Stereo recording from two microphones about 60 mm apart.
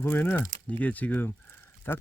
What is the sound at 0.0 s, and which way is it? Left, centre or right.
Speech, left.